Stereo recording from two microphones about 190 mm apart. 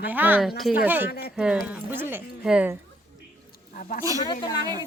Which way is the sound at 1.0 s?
60° left (ahead or behind).